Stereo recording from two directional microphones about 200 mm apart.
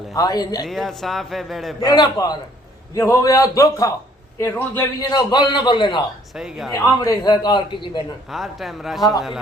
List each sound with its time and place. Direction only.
0.1 s a man's voice: 20° left (ahead or behind)
0.6 s a man's voice: centre (ahead or behind)
1.8 s a man's voice: 20° left (ahead or behind)
6.3 s a man's voice: 5° right (ahead or behind)
6.7 s a man's voice: 15° left (ahead or behind)
8.3 s a man's voice: centre (ahead or behind)